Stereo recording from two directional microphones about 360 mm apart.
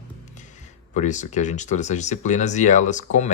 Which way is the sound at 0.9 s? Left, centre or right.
Centre.